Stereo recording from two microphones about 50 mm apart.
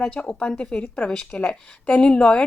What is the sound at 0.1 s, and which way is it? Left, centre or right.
Speech, centre.